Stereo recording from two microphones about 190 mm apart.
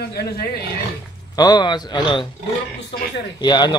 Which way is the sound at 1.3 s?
20° left (ahead or behind).